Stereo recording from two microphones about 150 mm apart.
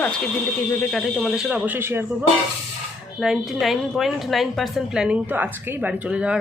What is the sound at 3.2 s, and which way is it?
A woman's voice, centre (ahead or behind).